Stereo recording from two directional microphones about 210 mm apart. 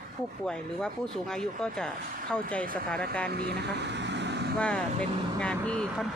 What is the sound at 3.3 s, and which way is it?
Speech, 50° right (ahead or behind).